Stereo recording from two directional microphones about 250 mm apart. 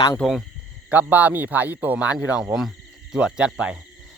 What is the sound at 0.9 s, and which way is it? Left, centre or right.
Speech, centre.